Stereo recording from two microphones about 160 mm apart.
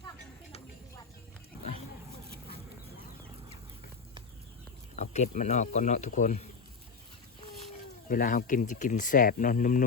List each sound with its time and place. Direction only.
4.9 s speech: 45° left (ahead or behind)
8.0 s speech: 60° left (ahead or behind)